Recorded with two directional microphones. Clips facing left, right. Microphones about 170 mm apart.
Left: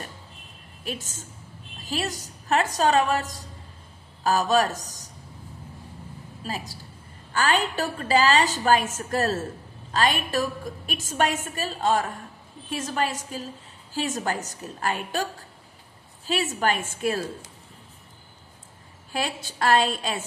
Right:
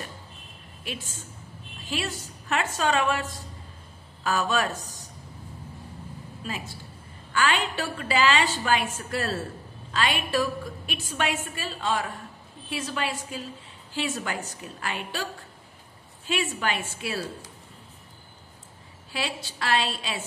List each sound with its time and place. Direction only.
0.8 s a woman's voice: 40° left (ahead or behind)
6.4 s a woman's voice: 40° left (ahead or behind)
16.3 s a woman's voice: 40° left (ahead or behind)
19.1 s a woman's voice: 45° left (ahead or behind)